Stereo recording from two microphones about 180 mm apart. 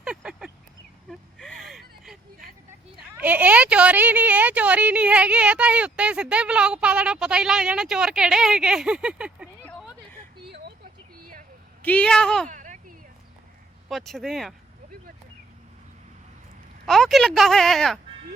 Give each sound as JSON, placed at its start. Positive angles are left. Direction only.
{"t": 0.0, "sound": "a sound", "side_deg": -5}
{"t": 1.1, "sound": "gasp", "side_deg": 0}
{"t": 3.2, "sound": "speech", "side_deg": -10}
{"t": 11.8, "sound": "speech", "side_deg": 10}
{"t": 12.5, "sound": "a sound", "side_deg": -45}
{"t": 13.8, "sound": "speech", "side_deg": 0}
{"t": 16.8, "sound": "speech", "side_deg": 0}